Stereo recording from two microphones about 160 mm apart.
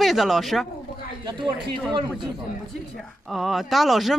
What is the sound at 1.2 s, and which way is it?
Speech, 30° right (ahead or behind).